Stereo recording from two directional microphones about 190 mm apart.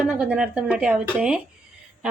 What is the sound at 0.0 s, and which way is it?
A woman's voice, 5° right (ahead or behind).